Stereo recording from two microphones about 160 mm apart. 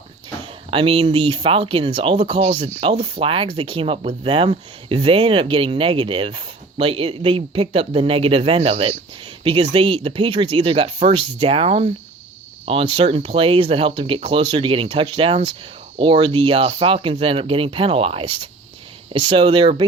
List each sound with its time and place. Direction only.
0.7 s speech: 35° right (ahead or behind)